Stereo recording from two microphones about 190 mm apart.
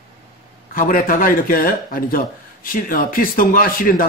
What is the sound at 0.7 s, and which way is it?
Speech, 45° left (ahead or behind).